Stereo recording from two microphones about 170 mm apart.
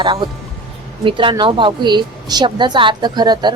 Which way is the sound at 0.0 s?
25° right (ahead or behind).